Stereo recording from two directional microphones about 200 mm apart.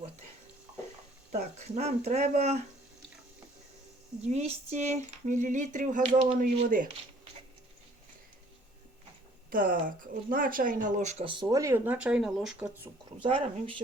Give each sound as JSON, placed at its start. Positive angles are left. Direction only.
{"t": 1.3, "sound": "speech", "side_deg": -35}
{"t": 4.3, "sound": "speech", "side_deg": -35}
{"t": 9.5, "sound": "speech", "side_deg": -45}
{"t": 13.2, "sound": "speech", "side_deg": -25}